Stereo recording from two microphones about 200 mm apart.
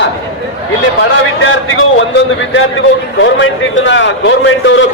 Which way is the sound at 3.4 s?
65° left (ahead or behind).